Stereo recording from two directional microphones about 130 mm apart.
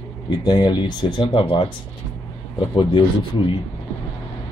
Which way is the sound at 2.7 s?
40° left (ahead or behind).